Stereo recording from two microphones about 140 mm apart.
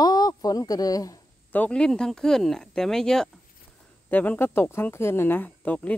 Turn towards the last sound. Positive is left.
turn(degrees=10)  # may be behind; listen again after turning